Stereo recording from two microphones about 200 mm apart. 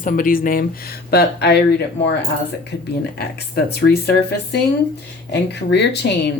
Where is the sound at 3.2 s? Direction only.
55° left (ahead or behind).